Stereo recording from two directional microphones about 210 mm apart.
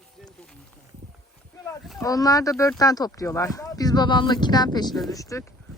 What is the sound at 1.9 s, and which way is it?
Speech, 15° left (ahead or behind).